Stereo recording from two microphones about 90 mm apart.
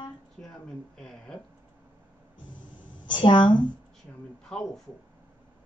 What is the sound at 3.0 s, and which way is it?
Speech, 60° left (ahead or behind).